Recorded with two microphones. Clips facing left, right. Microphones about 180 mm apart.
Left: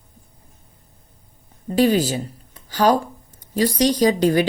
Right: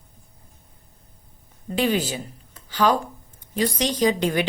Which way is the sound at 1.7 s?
40° left (ahead or behind).